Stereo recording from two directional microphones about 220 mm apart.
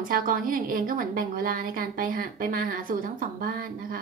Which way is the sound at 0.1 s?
40° right (ahead or behind).